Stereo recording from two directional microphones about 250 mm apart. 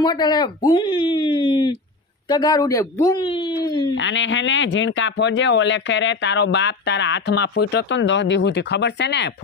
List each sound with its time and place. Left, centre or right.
0.0 s speech: centre
3.9 s speech: left